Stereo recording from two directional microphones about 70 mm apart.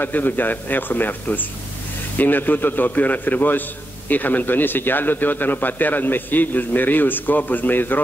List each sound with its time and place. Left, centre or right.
0.0 s speech: left